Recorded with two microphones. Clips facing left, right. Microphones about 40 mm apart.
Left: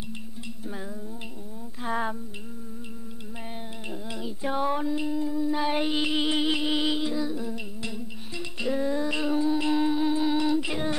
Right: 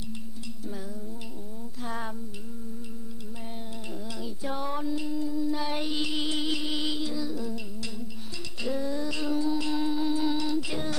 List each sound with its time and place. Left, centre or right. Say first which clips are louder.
1.8 s female singing: left 7 dB; left
4.2 s child singing: left 6 dB; left
8.6 s music: left 3 dB; left